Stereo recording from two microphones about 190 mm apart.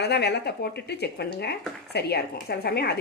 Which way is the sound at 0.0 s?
60° left (ahead or behind).